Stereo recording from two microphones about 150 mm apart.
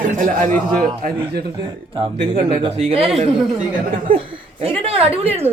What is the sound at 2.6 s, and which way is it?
Speech, 35° right (ahead or behind).